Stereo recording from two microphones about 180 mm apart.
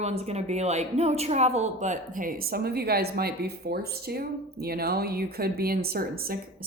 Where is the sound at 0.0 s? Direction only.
35° right (ahead or behind).